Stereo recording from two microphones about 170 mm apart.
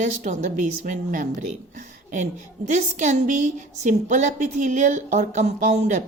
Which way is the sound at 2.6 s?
45° right (ahead or behind).